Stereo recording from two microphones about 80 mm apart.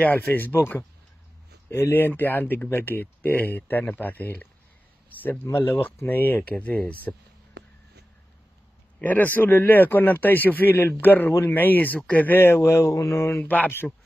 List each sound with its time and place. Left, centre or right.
0.0 s speech: left
9.0 s speech: left
13.4 s speech: left